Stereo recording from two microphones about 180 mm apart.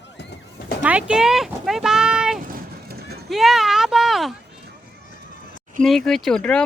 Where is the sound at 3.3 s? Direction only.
Centre (ahead or behind).